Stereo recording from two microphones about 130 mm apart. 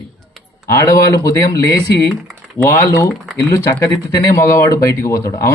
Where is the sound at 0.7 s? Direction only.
25° left (ahead or behind).